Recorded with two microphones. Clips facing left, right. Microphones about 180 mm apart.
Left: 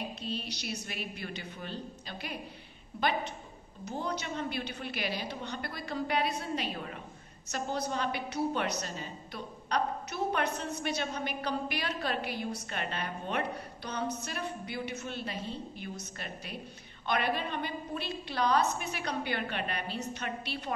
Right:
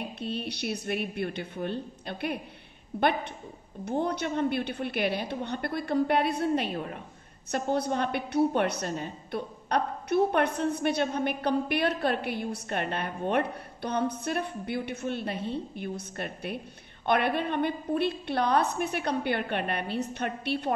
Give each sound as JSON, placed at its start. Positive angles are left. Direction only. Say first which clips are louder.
{"t": 0.2, "sound": "a woman's voice", "louder": "right 5 dB", "side_deg": -60}
{"t": 3.8, "sound": "a woman's voice", "louder": "right 7 dB", "side_deg": -60}